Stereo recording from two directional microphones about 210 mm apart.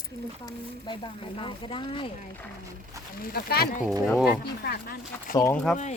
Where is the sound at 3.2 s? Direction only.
45° left (ahead or behind).